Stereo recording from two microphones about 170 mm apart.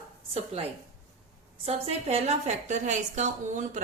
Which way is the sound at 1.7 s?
40° right (ahead or behind).